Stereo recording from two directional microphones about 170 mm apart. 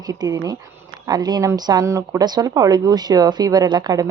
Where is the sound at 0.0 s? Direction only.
25° right (ahead or behind).